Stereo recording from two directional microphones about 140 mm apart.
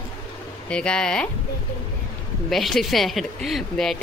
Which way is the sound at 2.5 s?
Centre (ahead or behind).